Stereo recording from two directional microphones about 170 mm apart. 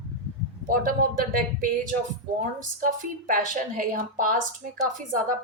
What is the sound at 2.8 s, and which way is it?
A woman's voice, 50° right (ahead or behind).